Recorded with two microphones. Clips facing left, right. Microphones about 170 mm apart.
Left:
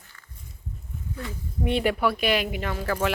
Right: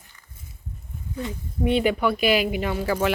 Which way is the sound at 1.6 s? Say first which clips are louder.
Right 3 dB; centre (ahead or behind).